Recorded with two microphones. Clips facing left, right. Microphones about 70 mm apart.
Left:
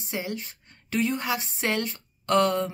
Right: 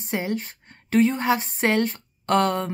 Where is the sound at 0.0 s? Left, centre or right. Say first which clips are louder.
Right 5 dB; right.